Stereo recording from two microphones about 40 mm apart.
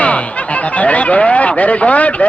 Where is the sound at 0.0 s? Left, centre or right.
Left.